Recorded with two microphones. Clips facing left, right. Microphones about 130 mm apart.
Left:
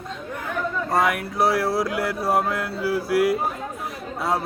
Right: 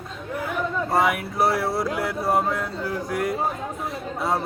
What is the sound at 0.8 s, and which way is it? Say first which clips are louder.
Speech: even; centre (ahead or behind).